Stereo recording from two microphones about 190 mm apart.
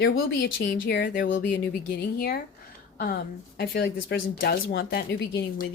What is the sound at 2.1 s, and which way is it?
Speech, 50° left (ahead or behind).